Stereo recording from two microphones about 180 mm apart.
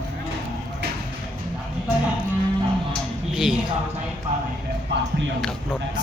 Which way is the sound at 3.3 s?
5° right (ahead or behind).